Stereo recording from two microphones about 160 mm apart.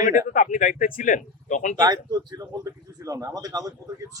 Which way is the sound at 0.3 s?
55° left (ahead or behind).